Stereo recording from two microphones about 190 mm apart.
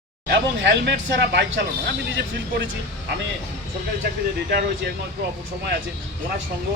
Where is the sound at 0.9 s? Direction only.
65° right (ahead or behind).